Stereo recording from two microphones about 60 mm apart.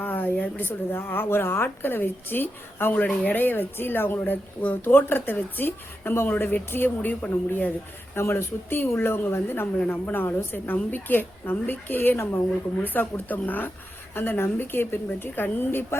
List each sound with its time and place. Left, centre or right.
0.0 s speech: left
8.1 s speech: left
9.7 s speech: left
10.1 s speech: left